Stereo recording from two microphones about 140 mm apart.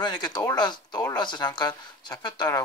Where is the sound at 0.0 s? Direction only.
30° left (ahead or behind).